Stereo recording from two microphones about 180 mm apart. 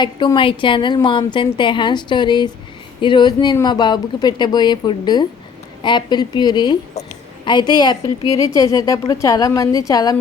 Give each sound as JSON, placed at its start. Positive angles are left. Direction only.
{"t": 0.0, "sound": "a woman's voice", "side_deg": 25}